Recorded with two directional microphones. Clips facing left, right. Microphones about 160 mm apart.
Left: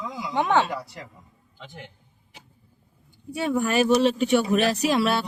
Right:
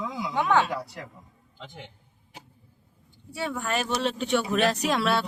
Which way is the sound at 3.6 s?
5° left (ahead or behind).